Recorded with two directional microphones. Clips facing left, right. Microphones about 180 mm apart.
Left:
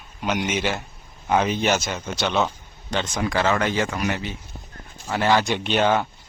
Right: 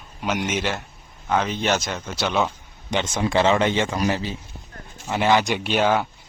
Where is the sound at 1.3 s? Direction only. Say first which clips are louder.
Left 2 dB; 10° left (ahead or behind).